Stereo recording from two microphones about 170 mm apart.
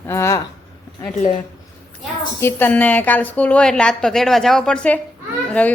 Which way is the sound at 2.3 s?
15° left (ahead or behind).